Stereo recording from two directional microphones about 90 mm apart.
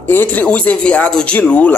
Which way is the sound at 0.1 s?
20° left (ahead or behind).